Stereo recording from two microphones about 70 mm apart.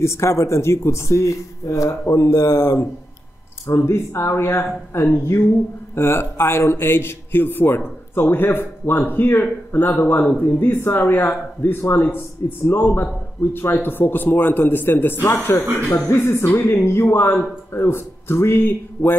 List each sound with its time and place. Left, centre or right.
0.0 s a man's voice: left